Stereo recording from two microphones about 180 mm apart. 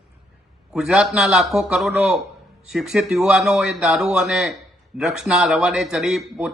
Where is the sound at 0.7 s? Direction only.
5° right (ahead or behind).